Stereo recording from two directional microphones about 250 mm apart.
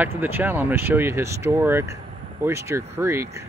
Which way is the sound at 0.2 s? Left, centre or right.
Centre.